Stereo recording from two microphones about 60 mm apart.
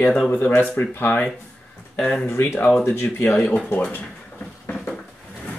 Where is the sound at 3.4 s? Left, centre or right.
Centre.